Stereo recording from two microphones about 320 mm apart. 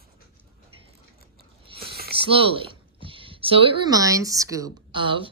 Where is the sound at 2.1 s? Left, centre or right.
Centre.